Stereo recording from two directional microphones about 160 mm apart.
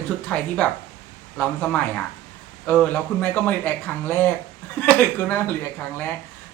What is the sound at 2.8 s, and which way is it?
Speech, 10° left (ahead or behind).